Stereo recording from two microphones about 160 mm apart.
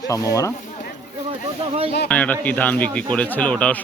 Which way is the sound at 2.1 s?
10° left (ahead or behind).